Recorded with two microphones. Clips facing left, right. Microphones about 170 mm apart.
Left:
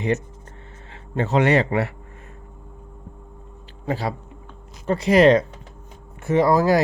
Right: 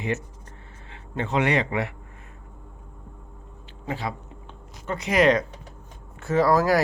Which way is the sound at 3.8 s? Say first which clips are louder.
Left 5 dB; 35° left (ahead or behind).